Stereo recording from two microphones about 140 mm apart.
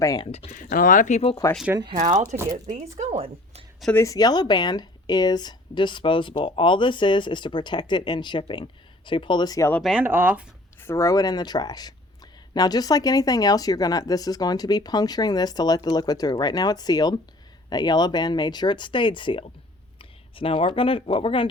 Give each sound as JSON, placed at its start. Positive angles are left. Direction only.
{"t": 0.0, "sound": "speech", "side_deg": 25}
{"t": 0.3, "sound": "speech", "side_deg": 50}
{"t": 0.5, "sound": "speech", "side_deg": 75}
{"t": 1.4, "sound": "speech", "side_deg": 20}
{"t": 2.0, "sound": "speech", "side_deg": -55}
{"t": 2.2, "sound": "speech", "side_deg": -15}
{"t": 2.6, "sound": "speech", "side_deg": -55}
{"t": 3.9, "sound": "speech", "side_deg": 25}
{"t": 10.0, "sound": "speech", "side_deg": -15}
{"t": 10.8, "sound": "speech", "side_deg": 20}